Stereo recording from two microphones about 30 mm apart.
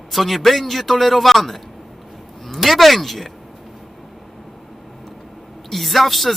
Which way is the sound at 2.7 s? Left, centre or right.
Centre.